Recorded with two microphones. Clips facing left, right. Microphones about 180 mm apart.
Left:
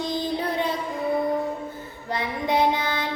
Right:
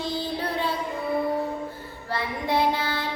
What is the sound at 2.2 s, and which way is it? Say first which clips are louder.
Child singing: left 2 dB; 20° left (ahead or behind).